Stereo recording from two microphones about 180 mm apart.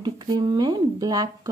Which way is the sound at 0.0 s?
25° right (ahead or behind).